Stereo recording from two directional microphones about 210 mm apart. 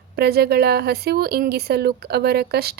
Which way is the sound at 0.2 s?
50° right (ahead or behind).